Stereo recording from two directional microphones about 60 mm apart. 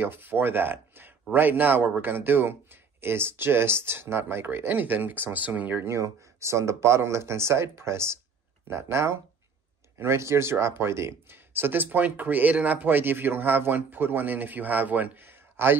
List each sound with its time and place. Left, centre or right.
0.0 s speech: right
5.9 s speech: right